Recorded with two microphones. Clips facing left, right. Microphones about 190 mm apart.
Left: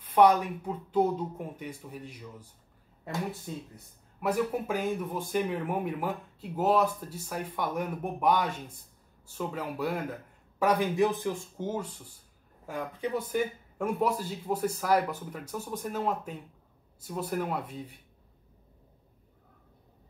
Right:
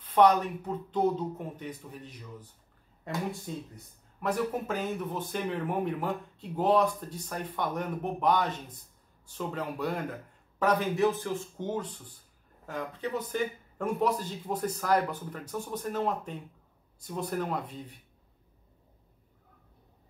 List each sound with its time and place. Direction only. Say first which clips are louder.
0.0 s speech: left 1 dB; 10° left (ahead or behind)